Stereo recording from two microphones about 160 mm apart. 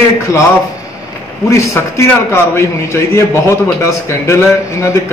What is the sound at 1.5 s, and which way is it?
A man's voice, 20° left (ahead or behind).